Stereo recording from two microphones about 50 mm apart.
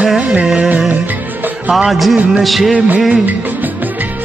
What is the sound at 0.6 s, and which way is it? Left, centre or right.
Music, right.